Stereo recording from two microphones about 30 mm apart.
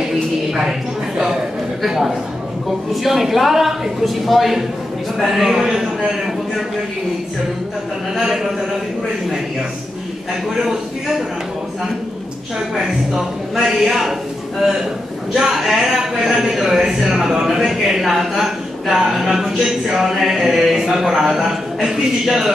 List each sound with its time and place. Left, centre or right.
0.5 s a sound: centre
1.8 s a man's voice: centre
10.5 s speech: centre
12.5 s a woman's voice: centre
15.3 s speech: centre